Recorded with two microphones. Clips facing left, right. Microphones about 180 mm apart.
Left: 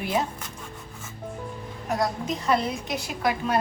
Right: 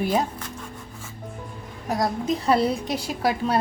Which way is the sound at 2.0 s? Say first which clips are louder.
Right 5 dB; 35° right (ahead or behind).